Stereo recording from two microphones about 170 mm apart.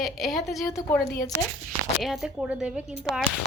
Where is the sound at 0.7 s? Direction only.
20° left (ahead or behind).